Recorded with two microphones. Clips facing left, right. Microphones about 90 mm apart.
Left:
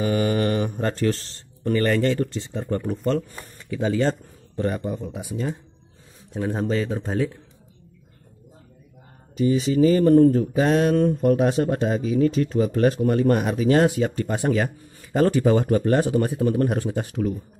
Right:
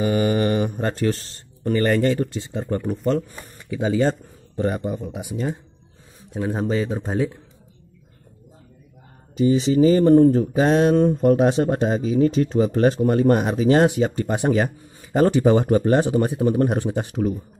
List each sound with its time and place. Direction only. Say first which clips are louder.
0.0 s speech: right 2 dB; 5° right (ahead or behind)
3.1 s speech: right 2 dB; 5° right (ahead or behind)
9.4 s speech: right 2 dB; 25° right (ahead or behind)